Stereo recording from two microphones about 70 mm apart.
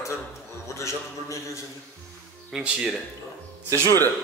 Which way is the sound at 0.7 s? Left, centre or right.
Left.